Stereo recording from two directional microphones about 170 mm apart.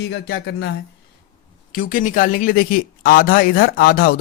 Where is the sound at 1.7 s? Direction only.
55° left (ahead or behind).